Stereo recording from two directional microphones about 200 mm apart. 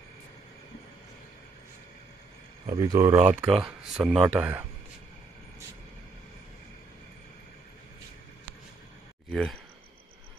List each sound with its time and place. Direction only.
2.6 s speech: 15° right (ahead or behind)
3.3 s speech: 5° right (ahead or behind)
9.3 s speech: centre (ahead or behind)